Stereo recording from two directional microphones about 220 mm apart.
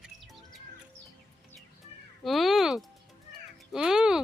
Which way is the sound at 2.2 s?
Centre (ahead or behind).